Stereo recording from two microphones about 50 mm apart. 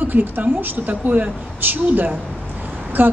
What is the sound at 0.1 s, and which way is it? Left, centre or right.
A woman's voice, right.